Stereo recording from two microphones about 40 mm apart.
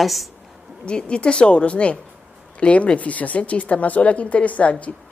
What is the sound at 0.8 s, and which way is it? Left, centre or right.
A woman's voice, left.